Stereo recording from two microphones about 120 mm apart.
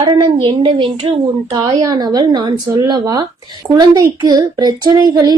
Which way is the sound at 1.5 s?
35° right (ahead or behind).